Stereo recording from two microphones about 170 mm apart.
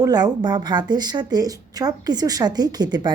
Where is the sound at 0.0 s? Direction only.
25° right (ahead or behind).